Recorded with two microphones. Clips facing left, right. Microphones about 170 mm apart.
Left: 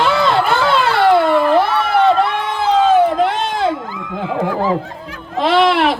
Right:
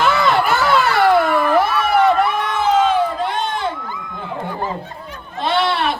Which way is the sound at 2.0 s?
30° left (ahead or behind).